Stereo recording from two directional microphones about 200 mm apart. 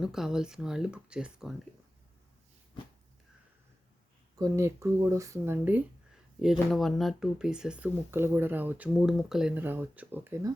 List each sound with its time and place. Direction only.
0.0 s speech: 5° right (ahead or behind)
4.4 s speech: 15° right (ahead or behind)